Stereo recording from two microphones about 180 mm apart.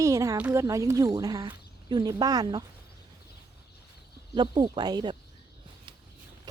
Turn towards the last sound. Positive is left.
turn(degrees=-25)  # may be behind; listen again after turning